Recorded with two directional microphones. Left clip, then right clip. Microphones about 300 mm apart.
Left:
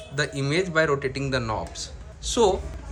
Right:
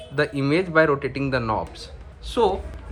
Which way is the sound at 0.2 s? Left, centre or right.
Centre.